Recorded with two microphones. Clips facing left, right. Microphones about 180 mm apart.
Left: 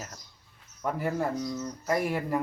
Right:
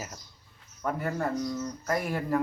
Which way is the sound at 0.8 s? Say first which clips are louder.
Left 1 dB; 5° left (ahead or behind).